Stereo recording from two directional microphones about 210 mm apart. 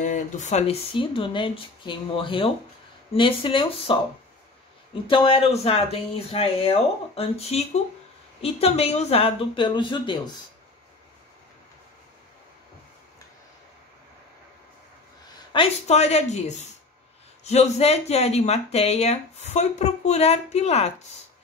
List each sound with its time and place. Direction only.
0.0 s speech: 35° left (ahead or behind)
5.1 s speech: 25° left (ahead or behind)
15.5 s speech: 30° left (ahead or behind)